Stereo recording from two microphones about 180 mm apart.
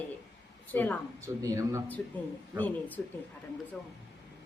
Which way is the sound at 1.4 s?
15° right (ahead or behind).